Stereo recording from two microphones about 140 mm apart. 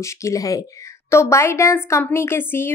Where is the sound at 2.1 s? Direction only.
15° left (ahead or behind).